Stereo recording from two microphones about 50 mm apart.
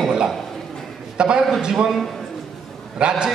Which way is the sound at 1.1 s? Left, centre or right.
Centre.